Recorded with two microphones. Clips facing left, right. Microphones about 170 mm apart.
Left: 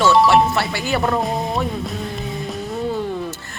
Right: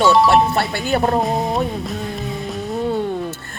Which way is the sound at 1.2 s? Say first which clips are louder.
Right 2 dB; centre (ahead or behind).